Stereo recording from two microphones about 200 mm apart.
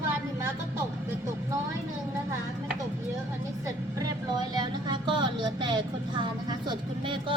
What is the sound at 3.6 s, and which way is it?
Speech, 15° right (ahead or behind).